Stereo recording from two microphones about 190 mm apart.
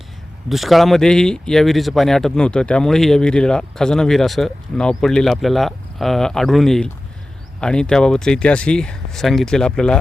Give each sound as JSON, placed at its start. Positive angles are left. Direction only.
{"t": 0.4, "sound": "speech", "side_deg": 0}